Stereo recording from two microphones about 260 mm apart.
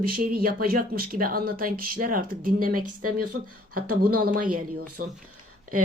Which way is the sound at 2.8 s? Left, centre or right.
Right.